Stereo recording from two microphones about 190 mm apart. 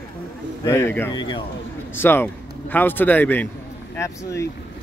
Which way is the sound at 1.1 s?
25° left (ahead or behind).